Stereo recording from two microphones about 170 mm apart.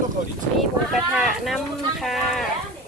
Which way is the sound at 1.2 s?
Centre (ahead or behind).